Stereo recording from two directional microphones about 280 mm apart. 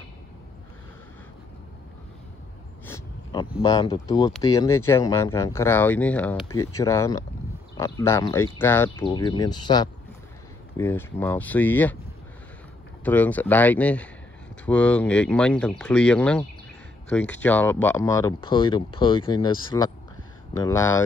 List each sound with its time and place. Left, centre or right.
2.9 s speech: centre
13.0 s speech: centre